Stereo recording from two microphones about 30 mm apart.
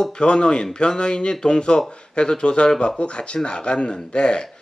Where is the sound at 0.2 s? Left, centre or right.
Left.